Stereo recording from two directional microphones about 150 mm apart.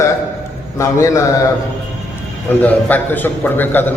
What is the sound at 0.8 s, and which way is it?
Speech, 20° left (ahead or behind).